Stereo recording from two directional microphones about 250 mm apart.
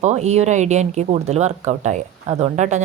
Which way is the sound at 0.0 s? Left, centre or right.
Right.